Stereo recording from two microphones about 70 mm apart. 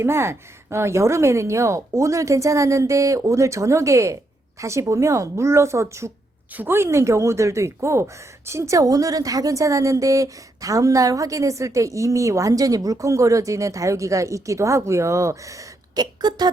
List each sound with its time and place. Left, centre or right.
0.0 s a woman's voice: right
6.5 s a woman's voice: right
6.7 s a woman's voice: right
16.0 s speech: right